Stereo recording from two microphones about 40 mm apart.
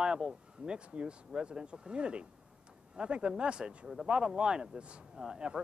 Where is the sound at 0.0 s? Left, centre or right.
Centre.